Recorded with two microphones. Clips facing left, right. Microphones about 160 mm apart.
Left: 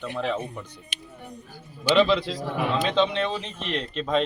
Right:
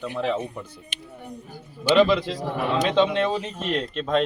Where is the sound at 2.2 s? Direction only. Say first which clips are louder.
Right 1 dB; 45° right (ahead or behind).